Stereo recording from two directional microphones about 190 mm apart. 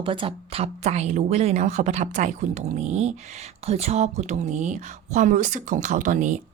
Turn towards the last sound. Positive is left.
turn(degrees=-40)  # may be behind; listen again after turning